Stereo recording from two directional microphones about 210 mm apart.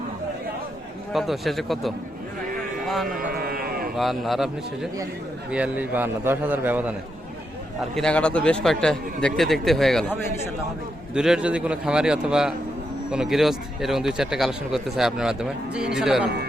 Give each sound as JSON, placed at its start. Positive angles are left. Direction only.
{"t": 1.1, "sound": "speech", "side_deg": 0}
{"t": 3.1, "sound": "livestock", "side_deg": -40}
{"t": 3.9, "sound": "a man's voice", "side_deg": 0}
{"t": 7.8, "sound": "speech", "side_deg": 0}